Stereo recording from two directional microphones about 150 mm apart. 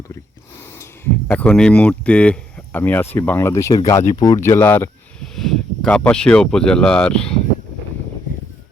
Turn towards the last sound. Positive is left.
turn(degrees=5)  # may be behind; listen again after turning